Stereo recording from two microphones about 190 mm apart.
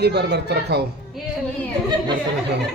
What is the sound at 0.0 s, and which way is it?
Speech, 60° right (ahead or behind).